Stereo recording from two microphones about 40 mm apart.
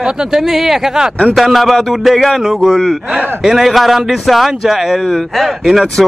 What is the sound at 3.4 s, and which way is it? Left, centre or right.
Speech, centre.